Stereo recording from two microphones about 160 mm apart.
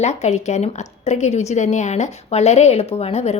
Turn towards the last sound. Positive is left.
turn(degrees=40)  # may be behind; listen again after turning